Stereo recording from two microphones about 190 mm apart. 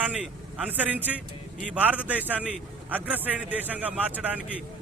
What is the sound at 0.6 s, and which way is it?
Speech, 10° right (ahead or behind).